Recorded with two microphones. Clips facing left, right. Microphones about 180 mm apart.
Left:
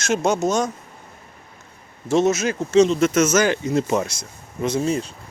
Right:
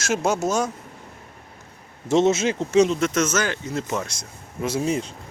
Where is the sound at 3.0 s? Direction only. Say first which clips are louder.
Left 5 dB; 5° left (ahead or behind).